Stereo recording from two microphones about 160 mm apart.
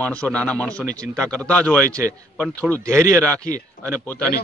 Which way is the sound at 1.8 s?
15° right (ahead or behind).